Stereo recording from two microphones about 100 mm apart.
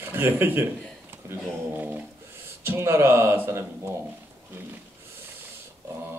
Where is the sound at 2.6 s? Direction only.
25° right (ahead or behind).